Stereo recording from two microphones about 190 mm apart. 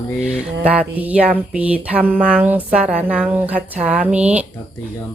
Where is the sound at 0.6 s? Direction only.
10° right (ahead or behind).